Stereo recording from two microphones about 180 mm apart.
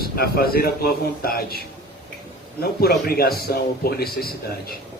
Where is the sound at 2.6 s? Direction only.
60° left (ahead or behind).